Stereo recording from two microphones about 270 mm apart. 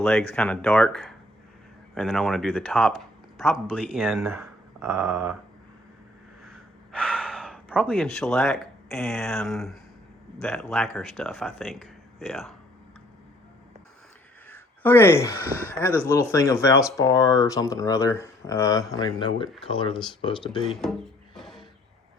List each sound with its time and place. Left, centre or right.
0.0 s speech: centre
6.4 s gasp: centre
10.4 s speech: centre
14.4 s a sound: centre
15.8 s speech: centre
20.7 s speech: centre
21.3 s a sound: centre